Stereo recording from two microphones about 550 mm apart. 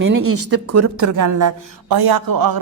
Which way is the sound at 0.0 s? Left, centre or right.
Right.